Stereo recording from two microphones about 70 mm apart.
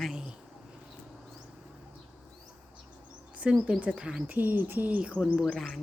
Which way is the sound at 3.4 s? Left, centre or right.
Centre.